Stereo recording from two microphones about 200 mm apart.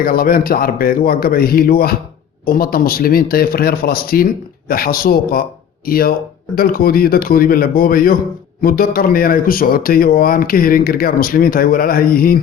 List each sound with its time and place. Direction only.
0.0 s speech: 45° left (ahead or behind)